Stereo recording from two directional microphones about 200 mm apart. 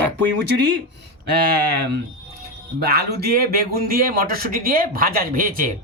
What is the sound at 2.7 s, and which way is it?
Speech, 50° right (ahead or behind).